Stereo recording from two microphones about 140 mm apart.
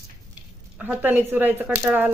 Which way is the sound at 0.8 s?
10° right (ahead or behind).